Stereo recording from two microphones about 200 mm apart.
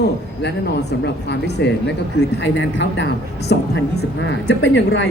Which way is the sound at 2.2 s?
70° left (ahead or behind).